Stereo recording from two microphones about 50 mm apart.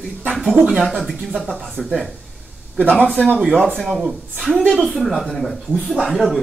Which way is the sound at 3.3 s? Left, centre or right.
Right.